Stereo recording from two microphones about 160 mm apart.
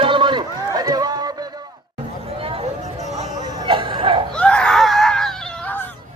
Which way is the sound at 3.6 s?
30° right (ahead or behind).